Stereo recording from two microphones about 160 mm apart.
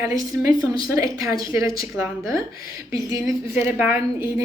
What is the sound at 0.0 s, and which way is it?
A woman's voice, 20° right (ahead or behind).